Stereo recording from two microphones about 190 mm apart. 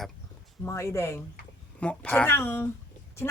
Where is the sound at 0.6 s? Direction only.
15° left (ahead or behind).